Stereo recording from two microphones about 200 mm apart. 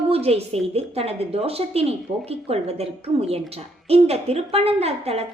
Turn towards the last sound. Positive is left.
turn(degrees=-30)  # may be behind; listen again after turning